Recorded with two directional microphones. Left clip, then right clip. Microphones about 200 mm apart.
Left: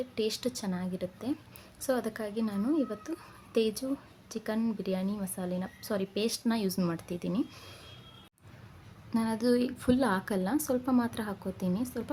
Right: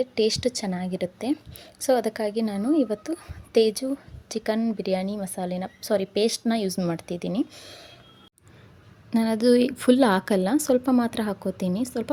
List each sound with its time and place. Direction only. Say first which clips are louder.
0.0 s speech: right 9 dB; 25° right (ahead or behind)
9.0 s speech: right 8 dB; 25° right (ahead or behind)